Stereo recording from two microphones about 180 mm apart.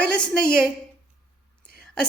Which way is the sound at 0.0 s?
5° left (ahead or behind).